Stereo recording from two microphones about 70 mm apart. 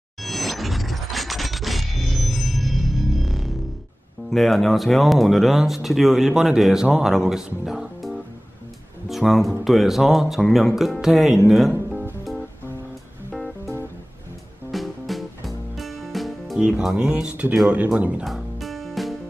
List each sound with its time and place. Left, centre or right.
0.2 s a sound: centre
4.3 s speech: centre
14.7 s music: centre
16.6 s speech: centre
18.2 s music: centre